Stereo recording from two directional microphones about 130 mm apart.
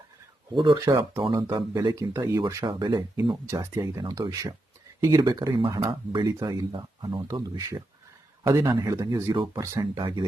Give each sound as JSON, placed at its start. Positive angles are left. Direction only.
{"t": 0.5, "sound": "speech", "side_deg": -35}
{"t": 5.5, "sound": "speech", "side_deg": -40}